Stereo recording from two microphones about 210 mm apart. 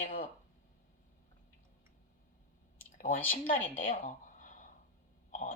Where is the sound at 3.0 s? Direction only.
40° left (ahead or behind).